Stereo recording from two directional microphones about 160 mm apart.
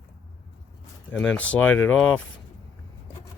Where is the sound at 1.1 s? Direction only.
5° left (ahead or behind).